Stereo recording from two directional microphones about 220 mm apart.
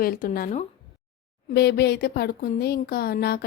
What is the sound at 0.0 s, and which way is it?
Speech, 40° left (ahead or behind).